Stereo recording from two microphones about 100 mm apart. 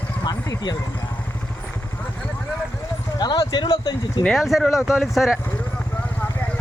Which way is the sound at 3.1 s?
45° left (ahead or behind).